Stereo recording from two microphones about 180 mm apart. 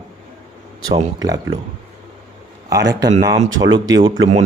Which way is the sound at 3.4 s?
90° right.